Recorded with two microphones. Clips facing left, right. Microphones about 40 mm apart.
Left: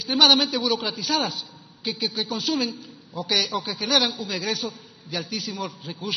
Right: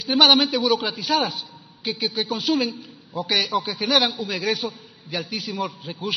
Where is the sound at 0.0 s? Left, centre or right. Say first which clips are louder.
Right 2 dB; centre.